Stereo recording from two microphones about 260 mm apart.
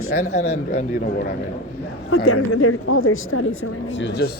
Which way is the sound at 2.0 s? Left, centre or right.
Left.